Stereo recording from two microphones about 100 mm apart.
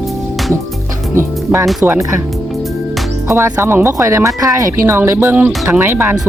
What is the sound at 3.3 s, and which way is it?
Speech, 25° right (ahead or behind).